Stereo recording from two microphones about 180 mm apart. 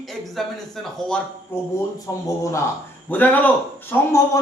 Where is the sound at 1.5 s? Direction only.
10° left (ahead or behind).